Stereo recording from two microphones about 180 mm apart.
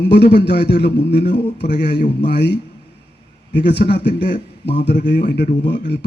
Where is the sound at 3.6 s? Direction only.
65° left (ahead or behind).